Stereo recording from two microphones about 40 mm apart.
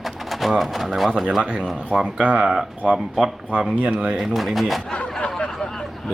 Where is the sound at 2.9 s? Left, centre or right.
Centre.